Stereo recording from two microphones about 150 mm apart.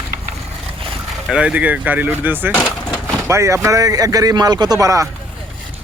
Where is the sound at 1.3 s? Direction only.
5° right (ahead or behind).